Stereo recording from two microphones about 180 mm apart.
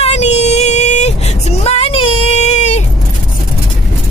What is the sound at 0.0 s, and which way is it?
Female singing, 35° left (ahead or behind).